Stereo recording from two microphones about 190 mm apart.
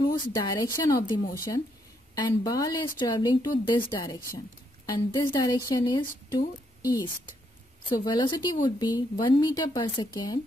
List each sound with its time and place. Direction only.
0.0 s speech: 20° left (ahead or behind)